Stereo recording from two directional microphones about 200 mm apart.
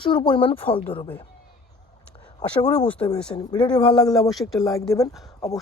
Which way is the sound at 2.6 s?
10° left (ahead or behind).